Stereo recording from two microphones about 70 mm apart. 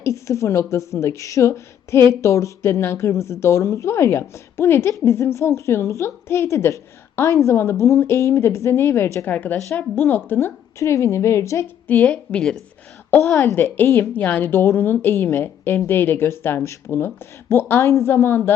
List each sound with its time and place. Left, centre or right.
0.0 s a woman's voice: left
9.2 s a woman's voice: left
12.0 s a woman's voice: centre
13.2 s speech: left
13.6 s a woman's voice: left